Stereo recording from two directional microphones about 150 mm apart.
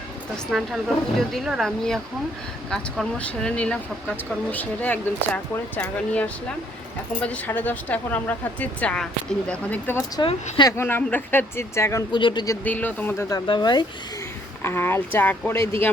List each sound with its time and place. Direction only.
0.5 s speech: centre (ahead or behind); by 12.0 s 20° left (ahead or behind)
12.1 s speech: 30° left (ahead or behind)
12.6 s speech: 10° left (ahead or behind)
13.3 s speech: 30° left (ahead or behind)
14.6 s speech: 15° left (ahead or behind)